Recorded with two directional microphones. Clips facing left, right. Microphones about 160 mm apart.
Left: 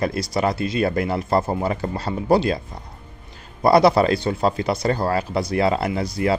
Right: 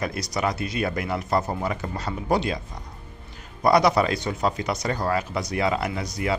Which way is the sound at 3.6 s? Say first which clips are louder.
Left 4 dB; 30° left (ahead or behind).